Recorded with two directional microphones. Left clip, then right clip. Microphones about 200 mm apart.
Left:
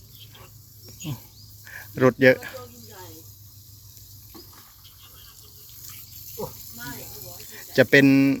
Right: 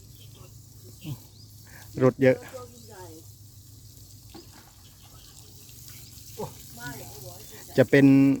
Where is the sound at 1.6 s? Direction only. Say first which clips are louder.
Left 3 dB; 5° right (ahead or behind).